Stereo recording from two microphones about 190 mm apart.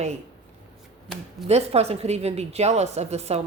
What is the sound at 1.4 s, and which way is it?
A woman's voice, 35° right (ahead or behind).